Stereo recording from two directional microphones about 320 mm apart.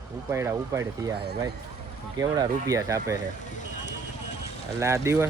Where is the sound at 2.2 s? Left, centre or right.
Centre.